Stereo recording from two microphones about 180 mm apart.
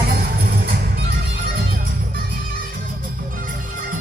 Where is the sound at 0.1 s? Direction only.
60° right (ahead or behind).